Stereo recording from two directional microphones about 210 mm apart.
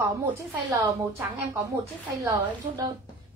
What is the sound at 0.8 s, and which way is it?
A woman's voice, 15° right (ahead or behind).